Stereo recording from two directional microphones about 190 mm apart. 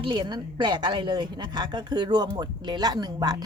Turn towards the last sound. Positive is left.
turn(degrees=-20)  # may be behind; listen again after turning